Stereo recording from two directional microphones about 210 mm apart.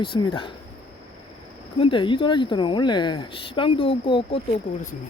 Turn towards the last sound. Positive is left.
turn(degrees=35)  # may be behind; listen again after turning